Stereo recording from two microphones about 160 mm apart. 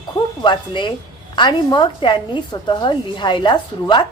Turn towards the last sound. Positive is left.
turn(degrees=30)  # may be behind; listen again after turning